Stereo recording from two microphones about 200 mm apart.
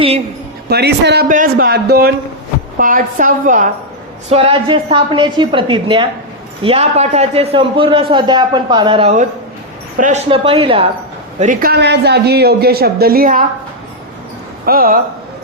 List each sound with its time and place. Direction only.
0.7 s a woman's voice: 55° right (ahead or behind)
1.3 s a man's voice: 45° right (ahead or behind)
4.3 s a man's voice: 25° right (ahead or behind)
10.2 s a man's voice: 25° right (ahead or behind)
11.3 s a man's voice: 45° right (ahead or behind)
14.6 s speech: 45° right (ahead or behind)